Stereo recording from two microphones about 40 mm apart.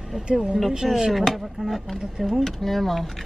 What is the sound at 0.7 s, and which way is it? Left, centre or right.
Speech, centre.